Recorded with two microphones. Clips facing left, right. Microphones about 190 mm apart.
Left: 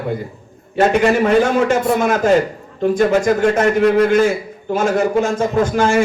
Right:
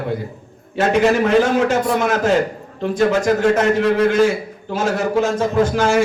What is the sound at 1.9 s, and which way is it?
A man's voice, 50° left (ahead or behind).